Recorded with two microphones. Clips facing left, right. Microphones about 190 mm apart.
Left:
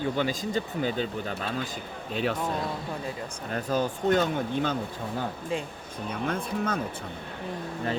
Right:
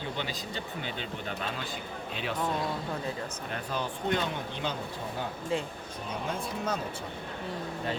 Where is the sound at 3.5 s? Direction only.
40° left (ahead or behind).